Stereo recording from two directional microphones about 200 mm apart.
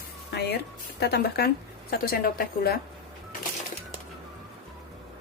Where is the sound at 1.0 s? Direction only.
55° left (ahead or behind).